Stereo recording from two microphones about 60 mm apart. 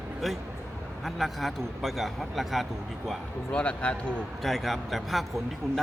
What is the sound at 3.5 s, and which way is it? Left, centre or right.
Speech, centre.